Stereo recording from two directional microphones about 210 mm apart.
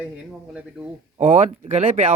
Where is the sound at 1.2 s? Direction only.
35° right (ahead or behind).